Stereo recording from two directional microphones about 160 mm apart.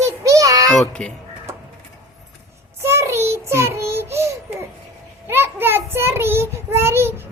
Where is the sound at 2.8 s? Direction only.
15° right (ahead or behind).